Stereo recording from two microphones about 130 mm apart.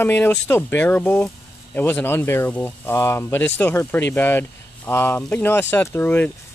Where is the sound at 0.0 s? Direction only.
15° left (ahead or behind).